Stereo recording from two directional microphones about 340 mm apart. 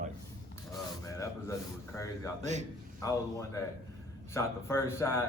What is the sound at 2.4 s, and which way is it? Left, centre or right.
Speech, centre.